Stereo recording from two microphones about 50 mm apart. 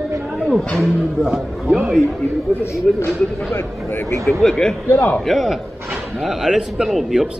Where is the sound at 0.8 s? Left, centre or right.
Centre.